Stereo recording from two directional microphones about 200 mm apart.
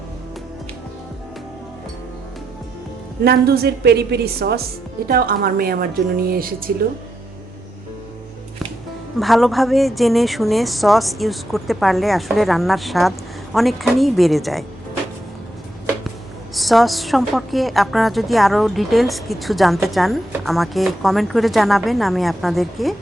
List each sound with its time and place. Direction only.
3.2 s a woman's voice: 50° right (ahead or behind)
9.1 s a woman's voice: centre (ahead or behind)
16.6 s a woman's voice: centre (ahead or behind)